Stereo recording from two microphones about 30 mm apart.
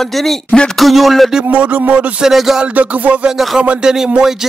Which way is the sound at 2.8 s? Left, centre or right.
Right.